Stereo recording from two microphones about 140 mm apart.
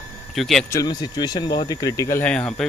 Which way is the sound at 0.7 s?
25° left (ahead or behind).